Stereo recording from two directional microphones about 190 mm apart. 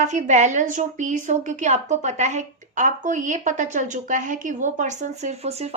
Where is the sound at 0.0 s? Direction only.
40° right (ahead or behind).